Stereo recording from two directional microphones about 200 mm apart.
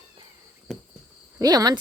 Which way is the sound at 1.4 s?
20° right (ahead or behind).